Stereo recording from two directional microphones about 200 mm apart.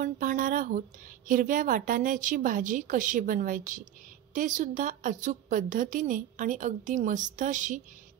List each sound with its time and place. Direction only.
0.0 s a woman's voice: 40° right (ahead or behind)